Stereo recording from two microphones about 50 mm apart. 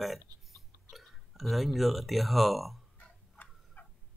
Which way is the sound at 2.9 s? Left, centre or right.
Left.